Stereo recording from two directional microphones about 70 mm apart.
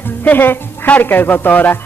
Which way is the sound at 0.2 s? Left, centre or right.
Left.